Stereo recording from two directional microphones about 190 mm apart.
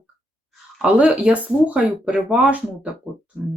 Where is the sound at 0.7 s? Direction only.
5° right (ahead or behind).